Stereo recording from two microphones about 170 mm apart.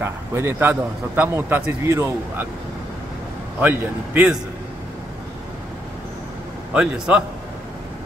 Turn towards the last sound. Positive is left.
turn(degrees=-5)  # may be behind; listen again after turning